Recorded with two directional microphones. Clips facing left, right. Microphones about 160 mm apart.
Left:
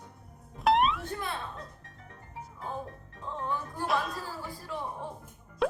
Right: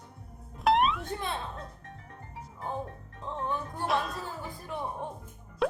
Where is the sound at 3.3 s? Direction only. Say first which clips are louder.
Right 1 dB; 20° right (ahead or behind).